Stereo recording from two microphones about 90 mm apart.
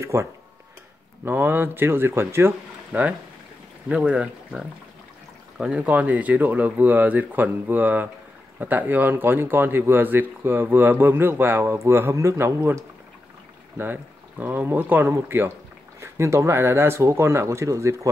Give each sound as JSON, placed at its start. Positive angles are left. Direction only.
{"t": 0.0, "sound": "speech", "side_deg": -30}
{"t": 2.9, "sound": "speech", "side_deg": -15}
{"t": 14.4, "sound": "speech", "side_deg": -20}